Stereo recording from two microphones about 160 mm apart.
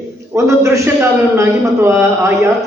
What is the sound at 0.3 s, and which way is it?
A man's voice, 20° right (ahead or behind).